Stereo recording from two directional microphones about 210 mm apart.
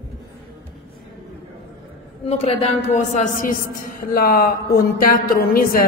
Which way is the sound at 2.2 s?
30° left (ahead or behind).